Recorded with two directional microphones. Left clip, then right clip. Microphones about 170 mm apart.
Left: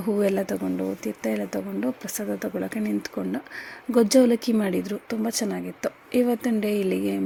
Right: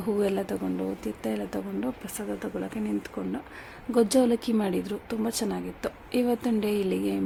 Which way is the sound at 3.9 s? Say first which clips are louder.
Left 4 dB; 15° left (ahead or behind).